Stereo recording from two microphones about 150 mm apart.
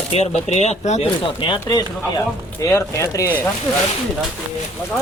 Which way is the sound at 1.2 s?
30° left (ahead or behind).